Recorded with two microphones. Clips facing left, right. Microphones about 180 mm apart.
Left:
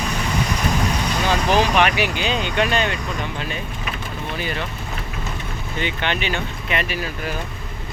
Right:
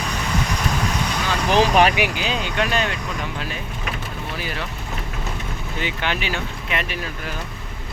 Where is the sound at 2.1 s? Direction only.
Centre (ahead or behind).